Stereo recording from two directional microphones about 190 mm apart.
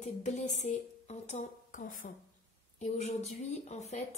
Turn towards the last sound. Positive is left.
turn(degrees=35)  # may be behind; listen again after turning